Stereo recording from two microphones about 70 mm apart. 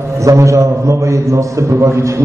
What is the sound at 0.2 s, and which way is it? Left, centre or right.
A man's voice, right.